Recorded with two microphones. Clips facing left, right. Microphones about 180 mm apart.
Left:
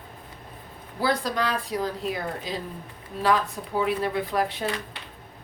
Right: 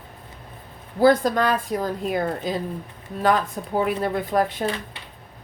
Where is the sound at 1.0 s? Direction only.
50° right (ahead or behind).